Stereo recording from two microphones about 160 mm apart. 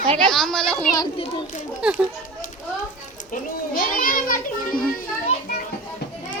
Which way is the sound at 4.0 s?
60° left (ahead or behind).